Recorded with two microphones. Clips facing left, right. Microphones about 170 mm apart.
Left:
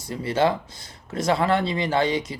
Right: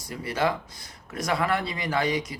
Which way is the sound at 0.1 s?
25° left (ahead or behind).